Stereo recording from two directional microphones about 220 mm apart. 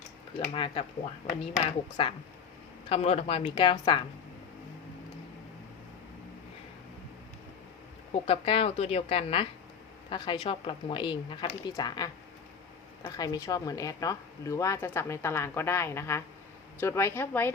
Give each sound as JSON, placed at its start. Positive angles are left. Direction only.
{"t": 0.3, "sound": "a woman's voice", "side_deg": 25}
{"t": 8.1, "sound": "a woman's voice", "side_deg": 25}